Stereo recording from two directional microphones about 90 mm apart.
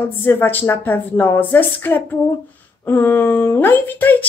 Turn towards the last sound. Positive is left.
turn(degrees=20)  # may be behind; listen again after turning